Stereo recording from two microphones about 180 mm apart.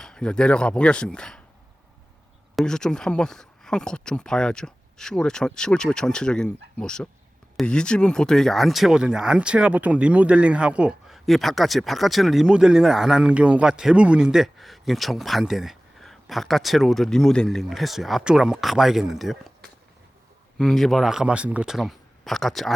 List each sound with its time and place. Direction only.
0.0 s speech: 5° left (ahead or behind)
2.6 s speech: 5° left (ahead or behind)
20.6 s speech: centre (ahead or behind)